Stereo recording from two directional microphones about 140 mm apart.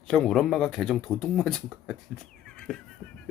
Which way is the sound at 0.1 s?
5° left (ahead or behind).